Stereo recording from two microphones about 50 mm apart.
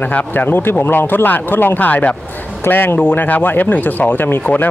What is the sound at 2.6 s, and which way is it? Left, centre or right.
Speech, left.